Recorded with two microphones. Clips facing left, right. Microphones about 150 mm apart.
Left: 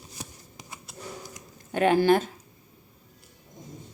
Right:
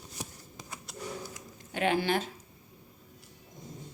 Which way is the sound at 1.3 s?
45° left (ahead or behind).